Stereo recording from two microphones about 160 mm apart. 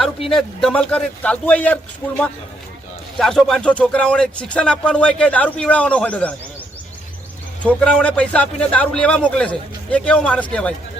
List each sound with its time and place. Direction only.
0.3 s speech: centre (ahead or behind)
7.6 s speech: 5° left (ahead or behind)